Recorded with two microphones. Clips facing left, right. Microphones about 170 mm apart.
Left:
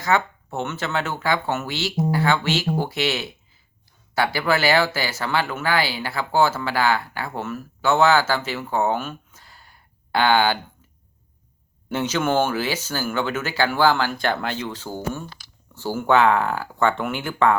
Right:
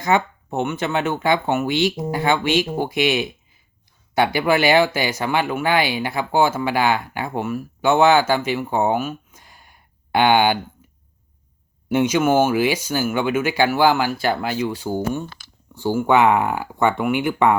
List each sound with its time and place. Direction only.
0.0 s speech: 20° right (ahead or behind)
11.9 s speech: 15° right (ahead or behind)